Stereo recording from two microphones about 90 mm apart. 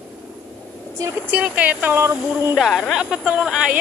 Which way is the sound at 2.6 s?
Centre (ahead or behind).